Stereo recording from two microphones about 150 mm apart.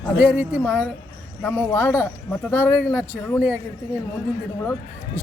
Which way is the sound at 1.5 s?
15° left (ahead or behind).